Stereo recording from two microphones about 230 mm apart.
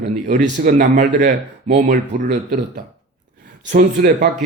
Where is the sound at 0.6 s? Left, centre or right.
Right.